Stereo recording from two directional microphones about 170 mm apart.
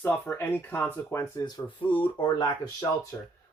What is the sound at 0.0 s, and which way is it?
Speech, 10° left (ahead or behind).